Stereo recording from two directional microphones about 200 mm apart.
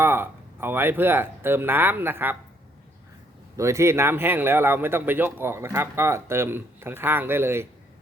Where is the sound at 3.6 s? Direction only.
15° right (ahead or behind).